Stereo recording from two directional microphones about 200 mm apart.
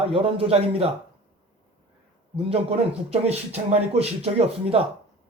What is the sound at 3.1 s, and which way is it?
Speech, 30° right (ahead or behind).